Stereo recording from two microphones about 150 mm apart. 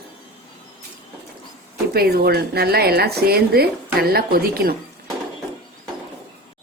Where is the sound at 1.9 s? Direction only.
90° right.